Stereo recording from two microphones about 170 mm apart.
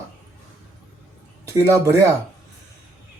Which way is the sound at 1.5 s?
20° right (ahead or behind).